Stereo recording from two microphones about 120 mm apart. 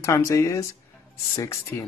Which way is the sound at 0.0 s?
25° left (ahead or behind).